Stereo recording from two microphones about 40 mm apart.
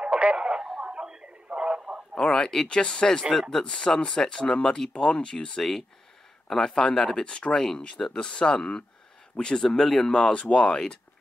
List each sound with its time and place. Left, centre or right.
0.0 s radio: right
0.4 s speech: right
0.7 s a sound: right
2.1 s speech: centre
5.6 s speech: centre
10.3 s speech: left